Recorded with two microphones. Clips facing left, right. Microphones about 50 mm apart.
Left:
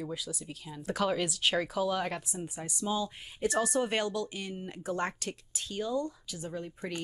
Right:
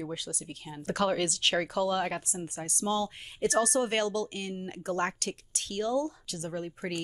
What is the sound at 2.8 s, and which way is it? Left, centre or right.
Speech, right.